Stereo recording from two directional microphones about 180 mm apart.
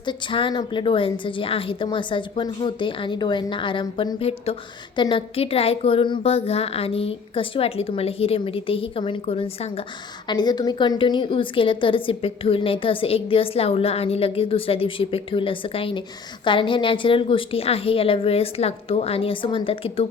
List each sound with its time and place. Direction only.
0.0 s a woman's voice: 25° left (ahead or behind)
10.2 s a woman's voice: 25° left (ahead or behind)